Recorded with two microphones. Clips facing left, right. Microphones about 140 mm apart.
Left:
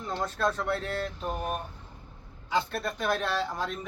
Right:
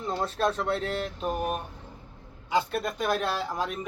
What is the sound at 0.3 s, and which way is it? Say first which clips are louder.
Speech: right 1 dB; 20° right (ahead or behind).